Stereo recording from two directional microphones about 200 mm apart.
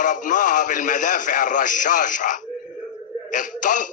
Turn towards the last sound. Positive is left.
turn(degrees=40)  # may be behind; listen again after turning